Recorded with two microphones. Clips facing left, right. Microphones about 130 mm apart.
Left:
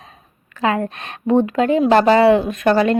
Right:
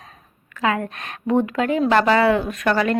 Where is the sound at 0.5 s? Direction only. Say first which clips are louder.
Left 3 dB; 30° left (ahead or behind).